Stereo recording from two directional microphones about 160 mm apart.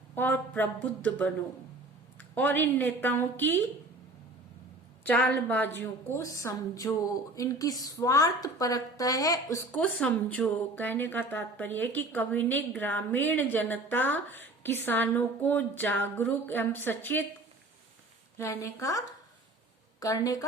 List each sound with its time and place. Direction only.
0.2 s speech: 10° left (ahead or behind)
2.1 s speech: 10° left (ahead or behind)
5.0 s speech: 10° left (ahead or behind)
9.7 s speech: 10° left (ahead or behind)
18.6 s speech: 20° left (ahead or behind)